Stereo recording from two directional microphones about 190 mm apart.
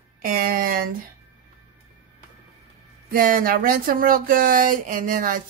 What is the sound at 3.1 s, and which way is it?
A woman's voice, 50° right (ahead or behind).